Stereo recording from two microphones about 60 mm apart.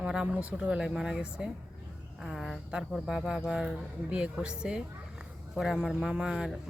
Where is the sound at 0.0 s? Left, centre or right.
Centre.